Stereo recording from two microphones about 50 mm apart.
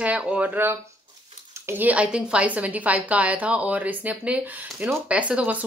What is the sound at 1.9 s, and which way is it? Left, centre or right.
Speech, right.